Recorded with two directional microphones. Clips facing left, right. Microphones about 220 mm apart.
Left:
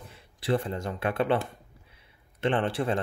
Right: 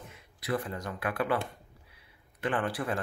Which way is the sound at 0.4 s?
30° left (ahead or behind).